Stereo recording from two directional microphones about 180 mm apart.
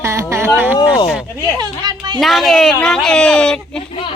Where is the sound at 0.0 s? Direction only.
15° right (ahead or behind).